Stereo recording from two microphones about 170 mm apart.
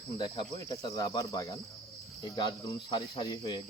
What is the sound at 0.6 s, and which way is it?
Speech, 20° left (ahead or behind).